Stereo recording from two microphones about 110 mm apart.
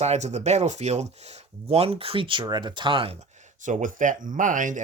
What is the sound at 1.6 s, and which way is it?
Speech, 65° right (ahead or behind).